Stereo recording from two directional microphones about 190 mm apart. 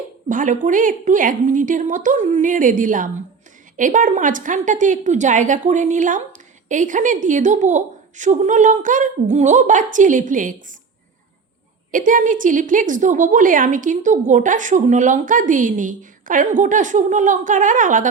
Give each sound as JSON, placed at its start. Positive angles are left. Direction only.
{"t": 0.3, "sound": "a woman's voice", "side_deg": -45}
{"t": 11.9, "sound": "a woman's voice", "side_deg": -45}